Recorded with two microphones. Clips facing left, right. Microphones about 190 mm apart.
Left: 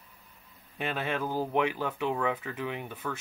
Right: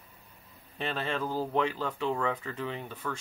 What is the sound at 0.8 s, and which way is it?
Speech, 10° left (ahead or behind).